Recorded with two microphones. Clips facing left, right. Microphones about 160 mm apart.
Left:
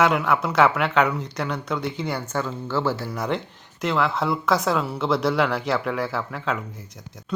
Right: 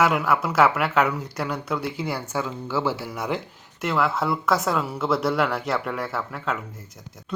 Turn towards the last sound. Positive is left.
turn(degrees=0)  # may be behind; listen again after turning